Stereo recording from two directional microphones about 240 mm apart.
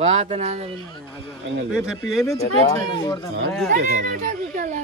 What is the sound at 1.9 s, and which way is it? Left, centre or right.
Speech, centre.